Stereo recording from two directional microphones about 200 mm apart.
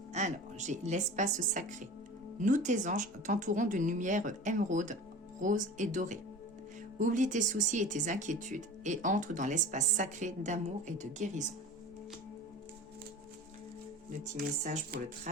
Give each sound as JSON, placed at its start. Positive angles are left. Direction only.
{"t": 0.1, "sound": "speech", "side_deg": -35}
{"t": 14.6, "sound": "speech", "side_deg": -45}